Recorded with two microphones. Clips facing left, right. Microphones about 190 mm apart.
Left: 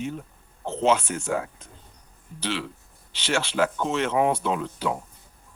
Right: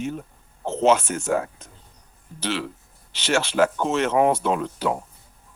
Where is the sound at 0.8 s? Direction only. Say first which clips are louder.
Right 3 dB; 45° right (ahead or behind).